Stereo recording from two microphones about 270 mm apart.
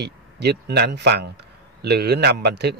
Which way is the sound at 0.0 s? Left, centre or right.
Right.